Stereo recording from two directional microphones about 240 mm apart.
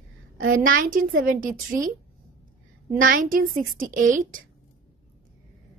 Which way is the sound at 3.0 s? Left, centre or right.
Right.